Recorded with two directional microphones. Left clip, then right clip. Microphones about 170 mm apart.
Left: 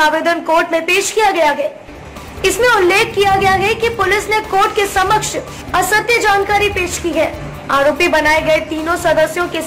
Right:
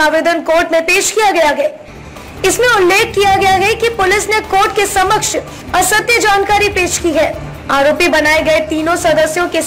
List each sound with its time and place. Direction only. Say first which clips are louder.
0.0 s speech: right 2 dB; 15° right (ahead or behind)
2.6 s a woman's voice: right 1 dB; 20° right (ahead or behind)